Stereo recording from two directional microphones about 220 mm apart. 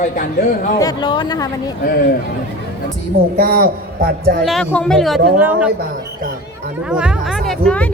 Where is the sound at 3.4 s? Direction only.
45° right (ahead or behind).